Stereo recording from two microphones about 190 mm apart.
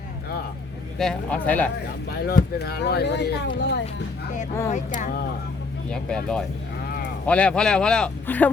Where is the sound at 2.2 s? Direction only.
55° left (ahead or behind).